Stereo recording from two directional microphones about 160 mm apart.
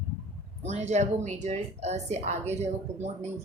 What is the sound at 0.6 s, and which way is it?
Speech, 45° right (ahead or behind).